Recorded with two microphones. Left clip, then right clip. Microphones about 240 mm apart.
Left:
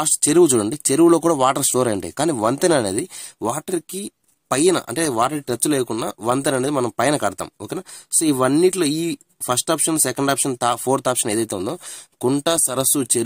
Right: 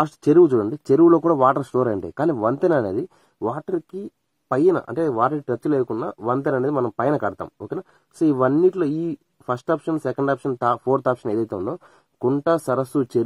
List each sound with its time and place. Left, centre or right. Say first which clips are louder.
0.3 s speech: even; left